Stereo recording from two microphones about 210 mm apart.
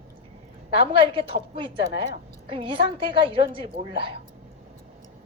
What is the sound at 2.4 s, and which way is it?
A woman's voice, 25° right (ahead or behind).